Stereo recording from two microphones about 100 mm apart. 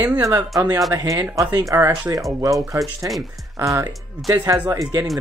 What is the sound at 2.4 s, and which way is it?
Speech, 35° right (ahead or behind).